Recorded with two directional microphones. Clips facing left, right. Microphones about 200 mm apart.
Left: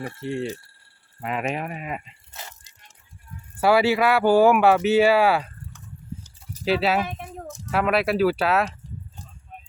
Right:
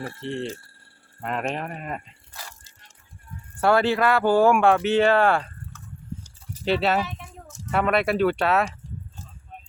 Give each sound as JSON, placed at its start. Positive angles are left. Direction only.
{"t": 0.0, "sound": "speech", "side_deg": 10}
{"t": 2.3, "sound": "music", "side_deg": 20}
{"t": 3.6, "sound": "speech", "side_deg": 5}
{"t": 7.0, "sound": "a sound", "side_deg": 55}
{"t": 7.7, "sound": "speech", "side_deg": 0}